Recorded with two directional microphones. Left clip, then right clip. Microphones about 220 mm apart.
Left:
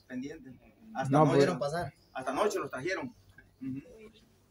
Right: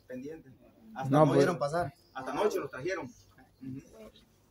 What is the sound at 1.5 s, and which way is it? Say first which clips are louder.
Speech: right 2 dB; 40° right (ahead or behind).